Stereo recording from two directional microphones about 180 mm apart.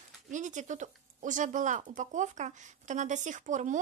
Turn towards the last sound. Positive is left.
turn(degrees=-45)  # may be behind; listen again after turning